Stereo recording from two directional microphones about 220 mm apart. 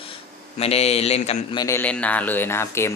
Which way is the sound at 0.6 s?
30° left (ahead or behind).